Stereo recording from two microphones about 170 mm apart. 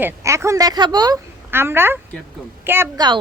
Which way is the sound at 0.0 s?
15° right (ahead or behind).